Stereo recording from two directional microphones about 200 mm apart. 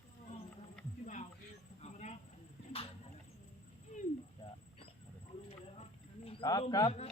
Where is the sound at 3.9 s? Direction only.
35° left (ahead or behind).